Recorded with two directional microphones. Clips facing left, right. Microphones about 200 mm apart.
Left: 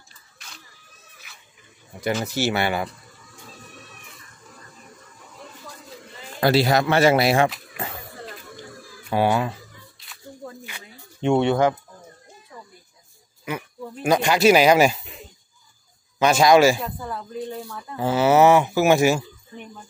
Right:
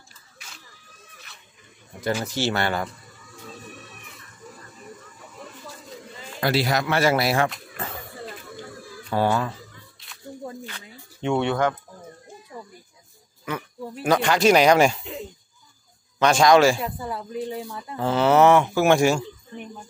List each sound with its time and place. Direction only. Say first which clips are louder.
1.3 s dog: right 1 dB; centre (ahead or behind)
2.2 s speech: left 2 dB; 10° left (ahead or behind)
6.4 s speech: left 4 dB; 30° left (ahead or behind)
9.1 s speech: left 2 dB; 15° left (ahead or behind)
10.6 s a sound: right 2 dB; 10° left (ahead or behind)
11.2 s speech: left 4 dB; 25° left (ahead or behind)
13.5 s speech: even; 10° left (ahead or behind)
16.2 s speech: left 1 dB; 5° left (ahead or behind)
17.0 s speech: right 1 dB; 10° right (ahead or behind)
17.9 s speech: left 1 dB; 5° left (ahead or behind)